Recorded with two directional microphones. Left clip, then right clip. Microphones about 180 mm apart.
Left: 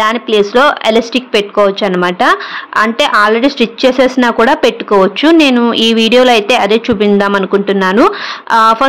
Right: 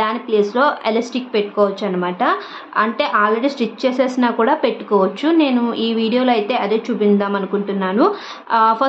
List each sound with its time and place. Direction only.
0.0 s speech: 45° left (ahead or behind)